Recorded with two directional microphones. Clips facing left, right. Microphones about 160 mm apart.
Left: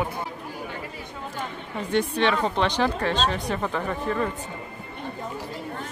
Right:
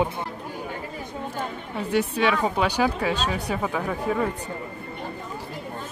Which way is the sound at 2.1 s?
5° right (ahead or behind).